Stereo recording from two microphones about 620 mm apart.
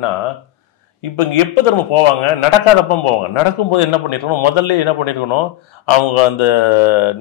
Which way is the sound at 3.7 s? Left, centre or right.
Left.